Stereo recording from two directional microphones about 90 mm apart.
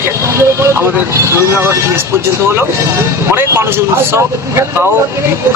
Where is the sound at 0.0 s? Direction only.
30° right (ahead or behind).